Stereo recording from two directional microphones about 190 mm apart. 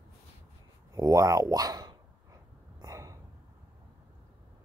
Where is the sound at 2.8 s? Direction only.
20° right (ahead or behind).